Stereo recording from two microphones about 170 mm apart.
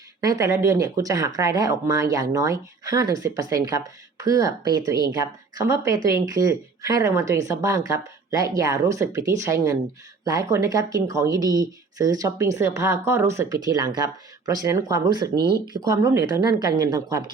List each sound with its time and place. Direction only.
0.2 s speech: 20° right (ahead or behind)